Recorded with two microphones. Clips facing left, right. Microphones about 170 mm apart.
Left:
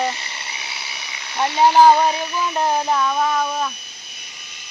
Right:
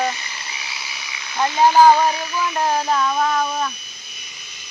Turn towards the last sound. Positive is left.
turn(degrees=5)  # may be behind; listen again after turning